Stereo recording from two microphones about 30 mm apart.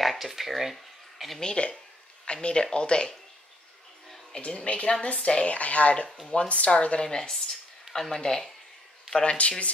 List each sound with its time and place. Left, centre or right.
0.0 s a sound: centre
1.4 s speech: left
4.4 s speech: left
7.1 s speech: centre
9.2 s speech: left